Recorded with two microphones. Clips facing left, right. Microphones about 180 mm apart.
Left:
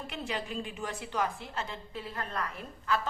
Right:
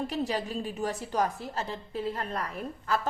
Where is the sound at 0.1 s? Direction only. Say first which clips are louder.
Right 6 dB; 35° right (ahead or behind).